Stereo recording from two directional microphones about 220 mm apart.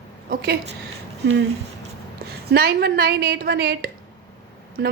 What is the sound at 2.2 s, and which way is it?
A woman's voice, 45° right (ahead or behind).